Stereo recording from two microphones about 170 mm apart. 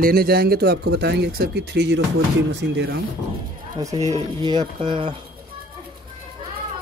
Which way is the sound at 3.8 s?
20° right (ahead or behind).